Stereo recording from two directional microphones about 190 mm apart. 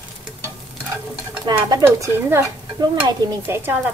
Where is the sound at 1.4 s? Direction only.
20° right (ahead or behind).